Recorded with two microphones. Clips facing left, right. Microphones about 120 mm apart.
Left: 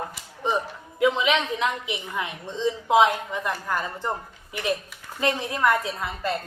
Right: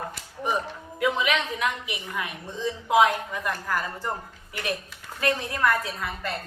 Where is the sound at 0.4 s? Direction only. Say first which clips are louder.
Left 2 dB; 20° left (ahead or behind).